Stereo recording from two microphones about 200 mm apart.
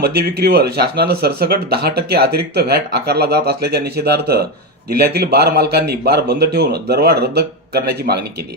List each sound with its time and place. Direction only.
0.0 s speech: 50° right (ahead or behind)